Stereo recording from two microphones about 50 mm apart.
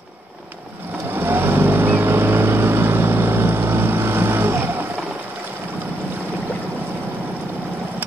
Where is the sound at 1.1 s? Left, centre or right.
Right.